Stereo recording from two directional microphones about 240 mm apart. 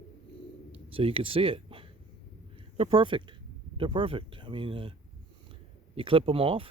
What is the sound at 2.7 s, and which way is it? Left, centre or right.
Speech, right.